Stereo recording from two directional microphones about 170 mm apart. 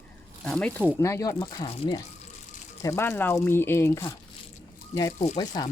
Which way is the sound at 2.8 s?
15° left (ahead or behind).